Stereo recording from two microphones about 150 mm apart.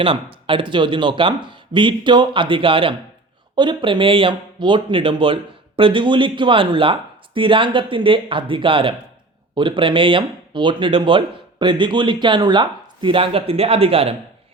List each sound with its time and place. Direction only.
0.0 s speech: 35° right (ahead or behind)